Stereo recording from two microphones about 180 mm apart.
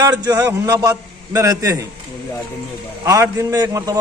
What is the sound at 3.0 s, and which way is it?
Speech, 20° right (ahead or behind).